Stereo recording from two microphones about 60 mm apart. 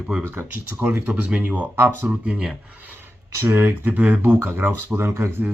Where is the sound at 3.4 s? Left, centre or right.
Right.